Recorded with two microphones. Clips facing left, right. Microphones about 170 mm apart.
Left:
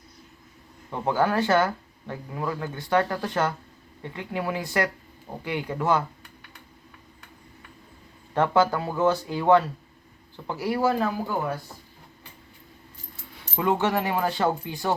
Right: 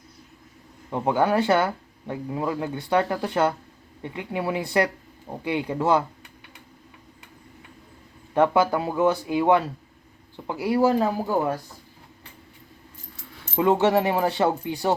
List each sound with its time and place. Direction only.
0.9 s speech: 15° right (ahead or behind)
8.3 s speech: 15° right (ahead or behind)
10.8 s speech: 30° right (ahead or behind)
13.6 s speech: 25° right (ahead or behind)